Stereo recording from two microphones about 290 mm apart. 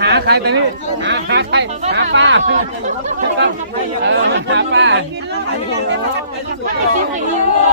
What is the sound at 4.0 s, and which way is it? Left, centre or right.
Speech, right.